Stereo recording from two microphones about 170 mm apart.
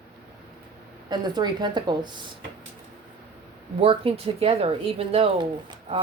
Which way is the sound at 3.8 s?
35° right (ahead or behind).